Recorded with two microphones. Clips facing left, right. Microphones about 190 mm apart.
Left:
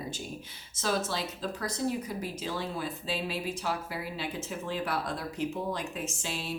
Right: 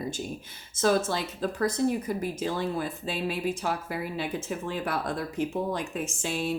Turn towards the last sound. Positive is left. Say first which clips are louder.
# right 7 dB
turn(degrees=-50)  # may be behind; listen again after turning